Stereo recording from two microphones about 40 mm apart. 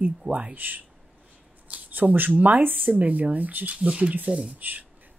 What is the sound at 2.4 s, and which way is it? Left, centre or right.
Speech, right.